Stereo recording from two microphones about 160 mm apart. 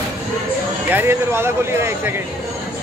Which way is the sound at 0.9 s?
15° right (ahead or behind).